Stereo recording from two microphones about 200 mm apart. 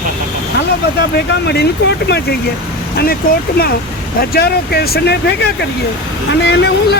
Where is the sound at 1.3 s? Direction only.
55° left (ahead or behind).